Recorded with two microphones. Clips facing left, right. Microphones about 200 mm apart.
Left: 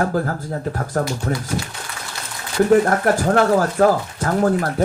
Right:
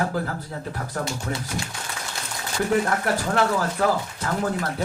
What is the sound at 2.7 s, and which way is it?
Speech, 45° left (ahead or behind).